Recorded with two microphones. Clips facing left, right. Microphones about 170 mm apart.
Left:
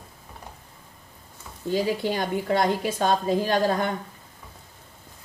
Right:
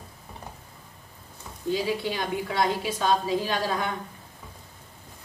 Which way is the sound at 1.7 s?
45° left (ahead or behind).